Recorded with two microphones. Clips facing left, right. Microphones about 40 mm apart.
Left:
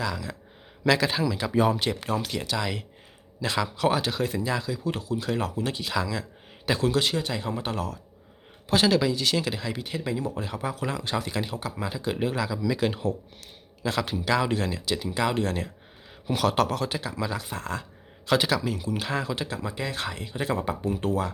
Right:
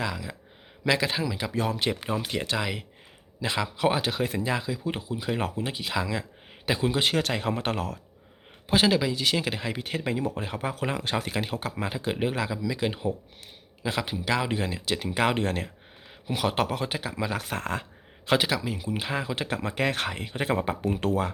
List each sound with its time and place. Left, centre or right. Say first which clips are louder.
0.0 s speech: left 1 dB; centre
1.5 s speech: left 7 dB; centre
1.8 s speech: left 1 dB; centre
5.4 s speech: even; right
5.6 s speech: left 1 dB; centre
7.3 s speech: right 2 dB; right
8.6 s speech: left 1 dB; right
12.6 s speech: left 2 dB; centre
14.8 s speech: right 3 dB; right
16.2 s speech: left 3 dB; centre
17.3 s speech: right 2 dB; right
18.3 s speech: left 2 dB; centre
19.4 s speech: right 3 dB; right
20.1 s speech: right 1 dB; right